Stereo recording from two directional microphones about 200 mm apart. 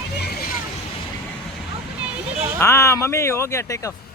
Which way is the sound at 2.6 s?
15° left (ahead or behind).